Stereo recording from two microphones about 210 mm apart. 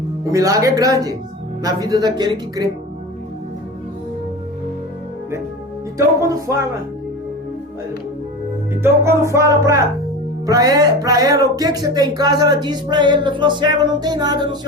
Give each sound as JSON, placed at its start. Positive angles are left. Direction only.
{"t": 0.3, "sound": "speech", "side_deg": -15}
{"t": 6.1, "sound": "speech", "side_deg": -15}
{"t": 8.7, "sound": "speech", "side_deg": -10}